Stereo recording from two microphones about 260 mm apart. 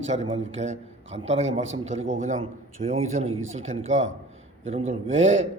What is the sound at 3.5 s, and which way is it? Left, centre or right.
A man's voice, right.